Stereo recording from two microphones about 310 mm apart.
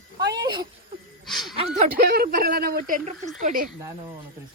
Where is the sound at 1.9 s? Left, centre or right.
Right.